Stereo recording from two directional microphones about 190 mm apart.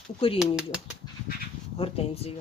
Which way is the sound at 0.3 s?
5° right (ahead or behind).